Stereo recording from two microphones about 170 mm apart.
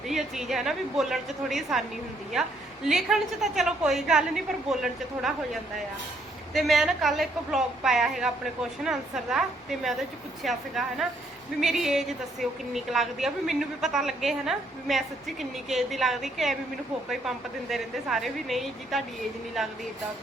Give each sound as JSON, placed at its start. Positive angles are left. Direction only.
{"t": 0.1, "sound": "a woman's voice", "side_deg": 0}
{"t": 6.5, "sound": "a woman's voice", "side_deg": 0}